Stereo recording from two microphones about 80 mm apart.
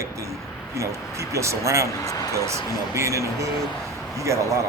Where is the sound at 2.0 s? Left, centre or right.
Left.